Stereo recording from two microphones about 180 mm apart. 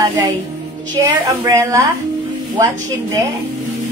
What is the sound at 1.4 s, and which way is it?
Speech, 15° right (ahead or behind).